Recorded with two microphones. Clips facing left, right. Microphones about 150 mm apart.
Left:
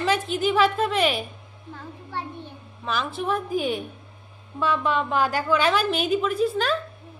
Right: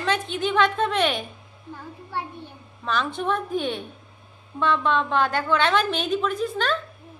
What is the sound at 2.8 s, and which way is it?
A woman's voice, 5° left (ahead or behind).